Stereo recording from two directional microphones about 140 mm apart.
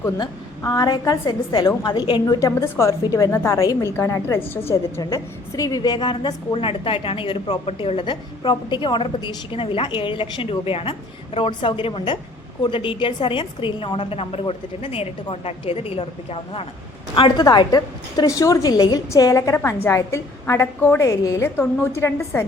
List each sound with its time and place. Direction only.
0.0 s a woman's voice: 25° left (ahead or behind)